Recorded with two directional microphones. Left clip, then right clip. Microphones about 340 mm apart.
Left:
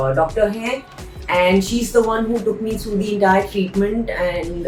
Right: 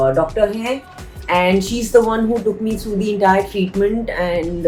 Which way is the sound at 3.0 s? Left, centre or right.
Right.